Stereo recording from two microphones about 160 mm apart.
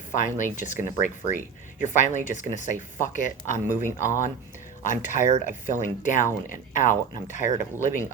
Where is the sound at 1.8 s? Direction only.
50° left (ahead or behind).